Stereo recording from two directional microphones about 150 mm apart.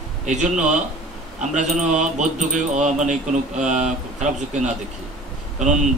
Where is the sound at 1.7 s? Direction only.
55° right (ahead or behind).